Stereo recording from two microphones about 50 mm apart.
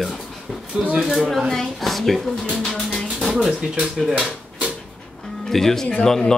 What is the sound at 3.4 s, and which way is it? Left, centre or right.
Speech, centre.